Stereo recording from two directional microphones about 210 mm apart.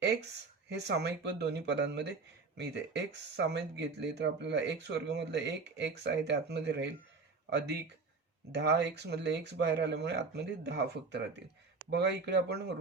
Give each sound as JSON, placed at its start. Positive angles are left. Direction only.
{"t": 0.0, "sound": "a sound", "side_deg": -50}
{"t": 0.7, "sound": "speech", "side_deg": -55}
{"t": 8.5, "sound": "speech", "side_deg": -50}